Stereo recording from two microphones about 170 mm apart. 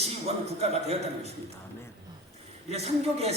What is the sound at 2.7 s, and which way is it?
Speech, 40° right (ahead or behind).